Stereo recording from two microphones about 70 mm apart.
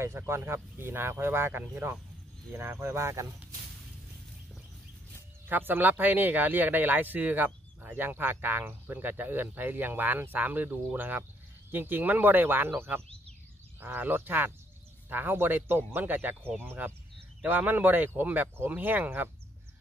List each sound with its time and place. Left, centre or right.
0.3 s speech: right
5.5 s speech: right